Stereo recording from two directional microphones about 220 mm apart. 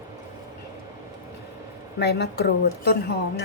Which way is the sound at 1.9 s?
50° left (ahead or behind).